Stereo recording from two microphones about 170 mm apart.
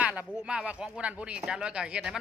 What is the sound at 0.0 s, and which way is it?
A woman's voice, 10° right (ahead or behind).